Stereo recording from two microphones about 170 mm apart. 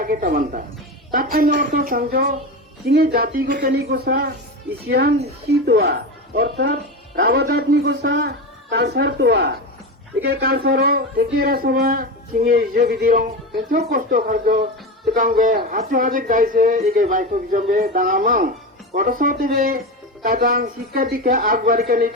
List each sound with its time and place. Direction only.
0.0 s a man's voice: 55° right (ahead or behind); by 8.3 s 90° right
8.7 s speech: 75° right (ahead or behind)
10.2 s a man's voice: 65° right (ahead or behind)